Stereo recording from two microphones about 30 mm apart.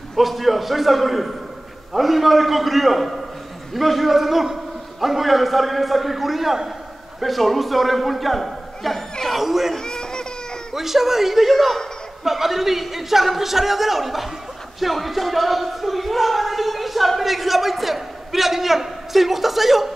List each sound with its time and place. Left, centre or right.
0.1 s a man's voice: centre
9.8 s baby cry: left
10.7 s a man's voice: centre